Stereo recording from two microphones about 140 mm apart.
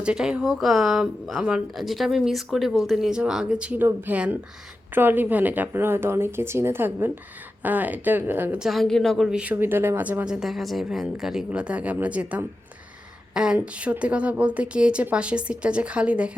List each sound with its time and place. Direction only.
0.0 s a woman's voice: 5° right (ahead or behind)
8.6 s a woman's voice: centre (ahead or behind)